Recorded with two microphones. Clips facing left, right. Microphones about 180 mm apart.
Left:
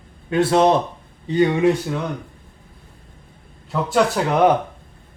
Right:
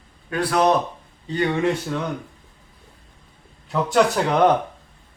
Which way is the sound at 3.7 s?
Centre (ahead or behind).